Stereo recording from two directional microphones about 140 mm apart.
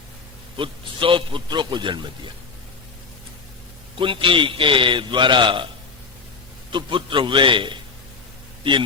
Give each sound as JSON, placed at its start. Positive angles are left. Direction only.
{"t": 0.5, "sound": "a man's voice", "side_deg": -35}
{"t": 3.9, "sound": "a man's voice", "side_deg": -40}
{"t": 6.7, "sound": "a man's voice", "side_deg": -35}